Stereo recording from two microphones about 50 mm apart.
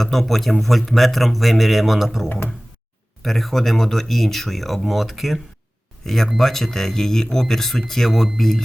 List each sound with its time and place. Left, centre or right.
0.0 s speech: centre
6.0 s speech: centre